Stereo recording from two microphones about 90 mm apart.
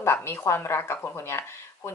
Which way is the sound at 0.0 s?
25° left (ahead or behind).